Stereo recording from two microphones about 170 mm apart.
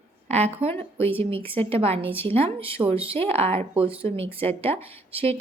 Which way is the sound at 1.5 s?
35° right (ahead or behind).